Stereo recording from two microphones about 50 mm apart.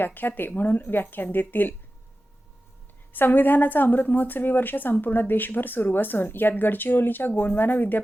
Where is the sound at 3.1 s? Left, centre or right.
Left.